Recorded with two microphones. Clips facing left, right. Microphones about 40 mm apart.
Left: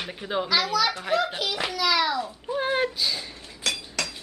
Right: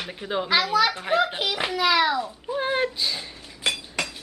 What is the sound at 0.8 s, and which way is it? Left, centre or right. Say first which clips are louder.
A child's voice: right 2 dB; centre.